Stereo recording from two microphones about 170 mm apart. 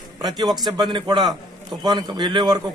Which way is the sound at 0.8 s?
25° right (ahead or behind).